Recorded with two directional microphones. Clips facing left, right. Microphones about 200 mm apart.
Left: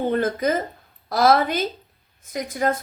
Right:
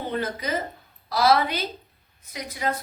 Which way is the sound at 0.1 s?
50° left (ahead or behind).